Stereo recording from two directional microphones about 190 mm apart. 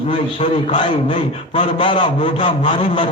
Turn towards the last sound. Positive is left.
turn(degrees=25)  # may be behind; listen again after turning